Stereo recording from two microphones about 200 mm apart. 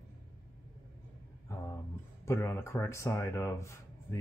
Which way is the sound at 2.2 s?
10° left (ahead or behind).